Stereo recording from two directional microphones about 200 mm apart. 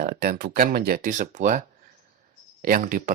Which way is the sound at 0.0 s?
50° right (ahead or behind).